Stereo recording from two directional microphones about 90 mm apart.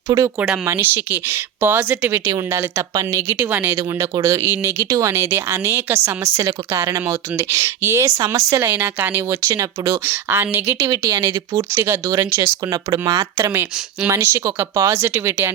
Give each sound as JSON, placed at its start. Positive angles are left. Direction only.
{"t": 0.3, "sound": "speech", "side_deg": -15}
{"t": 0.6, "sound": "speech", "side_deg": -25}
{"t": 3.5, "sound": "speech", "side_deg": -20}
{"t": 3.8, "sound": "speech", "side_deg": -35}
{"t": 8.6, "sound": "speech", "side_deg": -20}
{"t": 10.8, "sound": "speech", "side_deg": -45}
{"t": 11.5, "sound": "speech", "side_deg": -30}
{"t": 12.7, "sound": "speech", "side_deg": -50}
{"t": 13.3, "sound": "speech", "side_deg": -25}